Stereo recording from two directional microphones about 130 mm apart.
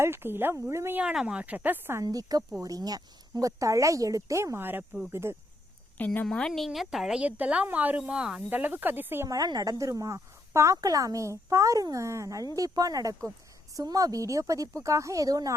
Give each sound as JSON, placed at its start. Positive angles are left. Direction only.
{"t": 0.0, "sound": "a woman's voice", "side_deg": -20}
{"t": 1.0, "sound": "a woman's voice", "side_deg": -5}
{"t": 2.6, "sound": "speech", "side_deg": -25}
{"t": 6.0, "sound": "a woman's voice", "side_deg": 10}